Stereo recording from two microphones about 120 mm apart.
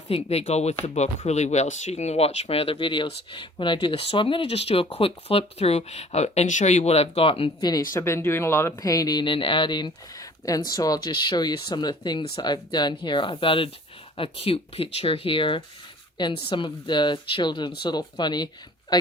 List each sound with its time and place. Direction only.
0.1 s speech: 60° left (ahead or behind)
7.6 s speech: 35° left (ahead or behind)